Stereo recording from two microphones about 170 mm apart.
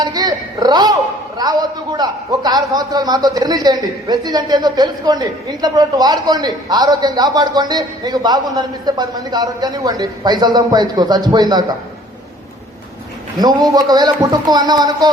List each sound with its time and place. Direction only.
0.0 s a sound: 25° right (ahead or behind)
1.4 s a man's voice: 25° right (ahead or behind)
13.4 s a man's voice: 25° right (ahead or behind)